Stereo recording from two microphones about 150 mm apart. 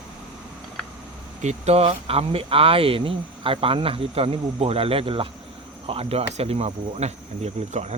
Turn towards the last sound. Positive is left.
turn(degrees=-45)  # may be behind; listen again after turning